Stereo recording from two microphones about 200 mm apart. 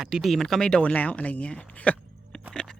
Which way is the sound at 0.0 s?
Centre (ahead or behind).